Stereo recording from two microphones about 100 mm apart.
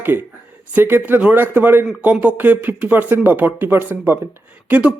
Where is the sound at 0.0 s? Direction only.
20° right (ahead or behind).